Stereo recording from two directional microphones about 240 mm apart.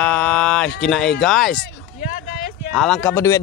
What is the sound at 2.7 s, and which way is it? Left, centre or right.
Speech, centre.